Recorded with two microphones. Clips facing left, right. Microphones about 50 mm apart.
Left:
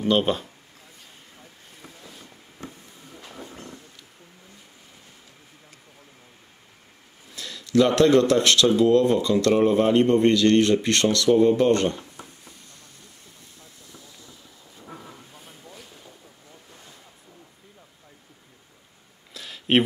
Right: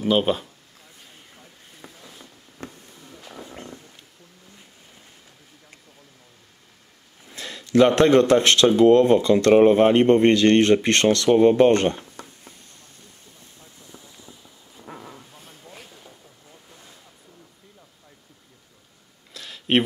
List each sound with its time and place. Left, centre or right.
0.0 s speech: centre
3.4 s wild animals: right
7.3 s speech: right
19.3 s a sound: centre